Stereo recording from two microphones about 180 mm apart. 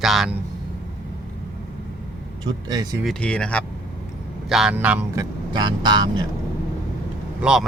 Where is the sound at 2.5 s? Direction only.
20° right (ahead or behind).